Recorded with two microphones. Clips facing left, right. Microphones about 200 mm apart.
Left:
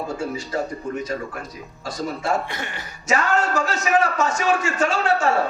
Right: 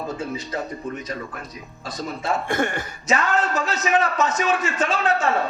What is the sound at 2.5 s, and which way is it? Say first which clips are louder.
Speech: right 9 dB; 50° right (ahead or behind).